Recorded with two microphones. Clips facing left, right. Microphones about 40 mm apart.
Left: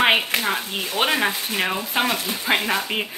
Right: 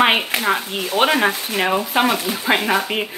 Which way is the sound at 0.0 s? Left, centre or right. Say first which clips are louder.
Right 2 dB; centre.